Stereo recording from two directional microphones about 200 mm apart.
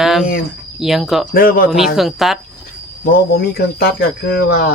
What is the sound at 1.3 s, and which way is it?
Speech, 45° left (ahead or behind).